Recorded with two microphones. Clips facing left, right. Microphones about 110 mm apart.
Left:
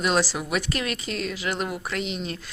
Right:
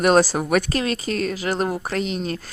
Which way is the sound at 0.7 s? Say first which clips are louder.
Right 6 dB; 35° right (ahead or behind).